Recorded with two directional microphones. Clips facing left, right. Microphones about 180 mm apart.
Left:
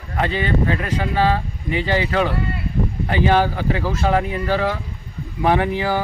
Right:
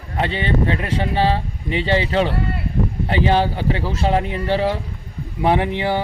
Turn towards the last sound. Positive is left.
turn(degrees=-25)  # may be behind; listen again after turning